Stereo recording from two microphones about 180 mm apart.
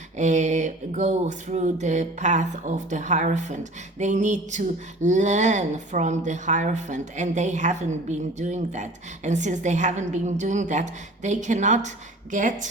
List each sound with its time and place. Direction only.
0.2 s a woman's voice: 40° right (ahead or behind)